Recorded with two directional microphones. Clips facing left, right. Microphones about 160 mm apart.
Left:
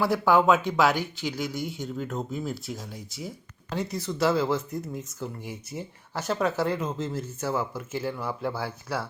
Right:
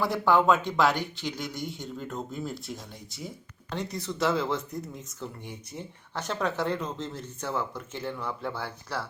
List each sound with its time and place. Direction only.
0.0 s speech: 5° left (ahead or behind)